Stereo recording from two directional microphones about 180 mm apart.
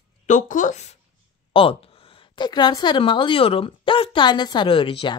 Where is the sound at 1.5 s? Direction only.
30° left (ahead or behind).